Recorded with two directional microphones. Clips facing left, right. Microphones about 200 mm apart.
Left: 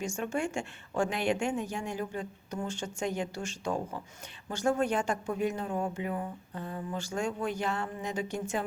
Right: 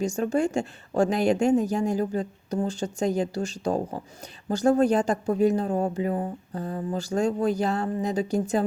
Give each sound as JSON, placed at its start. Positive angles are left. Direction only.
{"t": 0.0, "sound": "speech", "side_deg": -35}